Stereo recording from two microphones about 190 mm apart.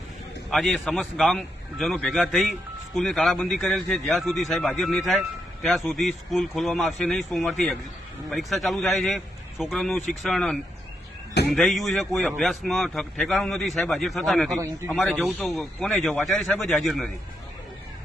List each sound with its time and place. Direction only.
0.5 s a man's voice: centre (ahead or behind)